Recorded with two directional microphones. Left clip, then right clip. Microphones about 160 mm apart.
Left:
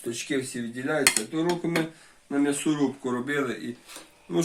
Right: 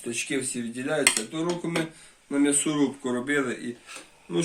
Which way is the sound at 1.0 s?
50° left (ahead or behind).